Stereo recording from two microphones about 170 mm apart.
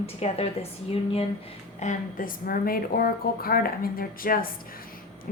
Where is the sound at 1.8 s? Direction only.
50° left (ahead or behind).